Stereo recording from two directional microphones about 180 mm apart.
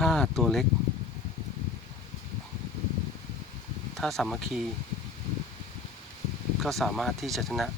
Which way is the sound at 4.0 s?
Centre (ahead or behind).